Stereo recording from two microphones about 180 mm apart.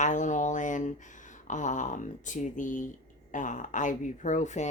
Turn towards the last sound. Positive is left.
turn(degrees=40)  # may be behind; listen again after turning